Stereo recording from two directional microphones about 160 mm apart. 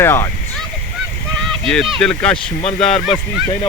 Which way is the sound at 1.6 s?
5° left (ahead or behind).